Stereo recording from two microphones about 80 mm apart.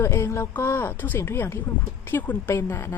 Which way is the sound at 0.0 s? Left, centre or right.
Left.